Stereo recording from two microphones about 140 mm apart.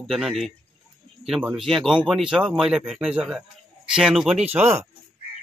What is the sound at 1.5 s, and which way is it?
Speech, centre (ahead or behind).